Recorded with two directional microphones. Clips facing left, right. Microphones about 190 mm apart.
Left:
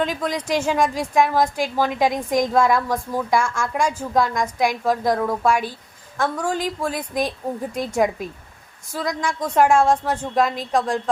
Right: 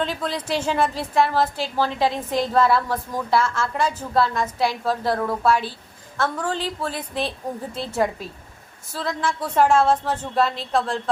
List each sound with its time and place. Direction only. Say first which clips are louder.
0.0 s a woman's voice: left 2 dB; 10° left (ahead or behind)